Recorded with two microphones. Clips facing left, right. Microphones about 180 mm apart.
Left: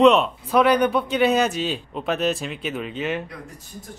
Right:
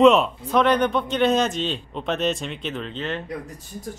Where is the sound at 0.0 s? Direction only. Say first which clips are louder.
Even; centre (ahead or behind).